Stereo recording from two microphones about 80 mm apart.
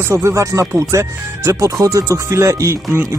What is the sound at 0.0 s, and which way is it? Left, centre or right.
Speech, right.